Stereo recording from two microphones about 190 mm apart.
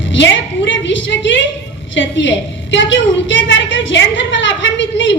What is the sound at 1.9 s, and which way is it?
A woman's voice, 75° left (ahead or behind).